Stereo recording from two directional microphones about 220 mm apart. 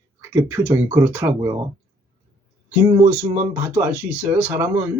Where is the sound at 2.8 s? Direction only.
15° right (ahead or behind).